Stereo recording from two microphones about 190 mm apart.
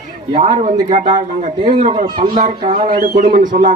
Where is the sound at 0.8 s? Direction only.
35° right (ahead or behind).